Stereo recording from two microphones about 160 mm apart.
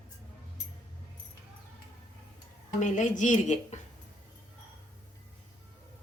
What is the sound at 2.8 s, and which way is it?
Speech, 50° left (ahead or behind).